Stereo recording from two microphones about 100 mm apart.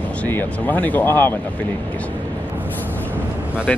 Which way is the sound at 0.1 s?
15° left (ahead or behind).